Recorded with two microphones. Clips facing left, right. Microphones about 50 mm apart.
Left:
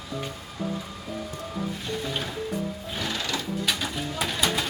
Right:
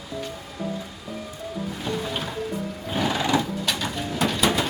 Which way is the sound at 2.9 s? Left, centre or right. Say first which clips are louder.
Right 9 dB; centre.